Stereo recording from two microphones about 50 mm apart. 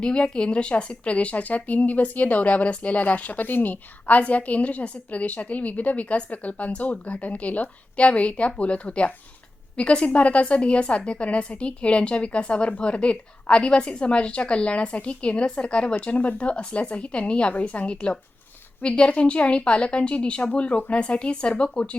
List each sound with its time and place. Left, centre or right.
0.0 s speech: centre